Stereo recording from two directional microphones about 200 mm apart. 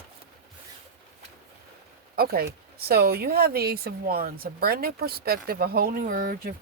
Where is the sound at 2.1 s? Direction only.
50° right (ahead or behind).